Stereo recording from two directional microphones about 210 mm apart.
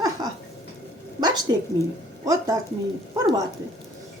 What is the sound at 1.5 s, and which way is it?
Speech, 20° right (ahead or behind).